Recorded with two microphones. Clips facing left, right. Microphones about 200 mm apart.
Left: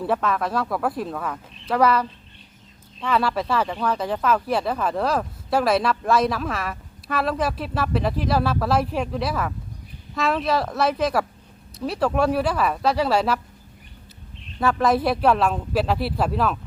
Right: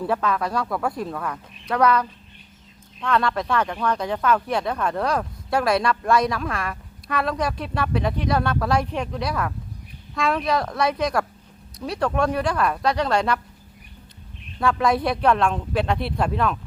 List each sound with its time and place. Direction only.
0.0 s speech: centre (ahead or behind)
14.6 s speech: 5° left (ahead or behind)